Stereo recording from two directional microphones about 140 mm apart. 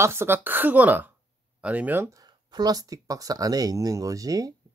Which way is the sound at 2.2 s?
30° right (ahead or behind).